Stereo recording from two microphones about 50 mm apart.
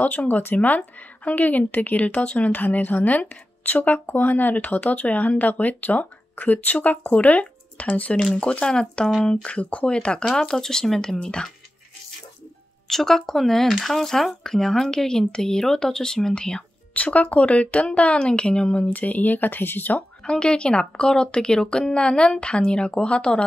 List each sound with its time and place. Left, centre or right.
0.0 s a woman's voice: left; by 11.5 s centre
12.8 s speech: centre
16.9 s speech: left
18.9 s a woman's voice: left
20.2 s speech: centre